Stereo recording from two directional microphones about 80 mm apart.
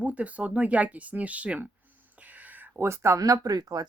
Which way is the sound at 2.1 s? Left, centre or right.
Centre.